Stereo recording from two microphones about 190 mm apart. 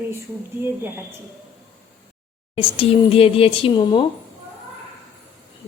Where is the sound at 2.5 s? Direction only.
30° left (ahead or behind).